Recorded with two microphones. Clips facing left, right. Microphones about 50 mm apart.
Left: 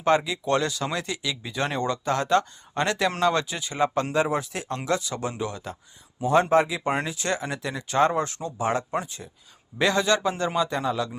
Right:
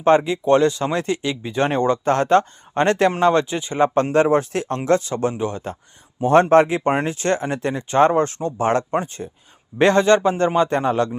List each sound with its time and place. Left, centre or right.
0.3 s speech: right
4.1 s speech: right
6.2 s speech: right
8.5 s speech: right
9.0 s speech: right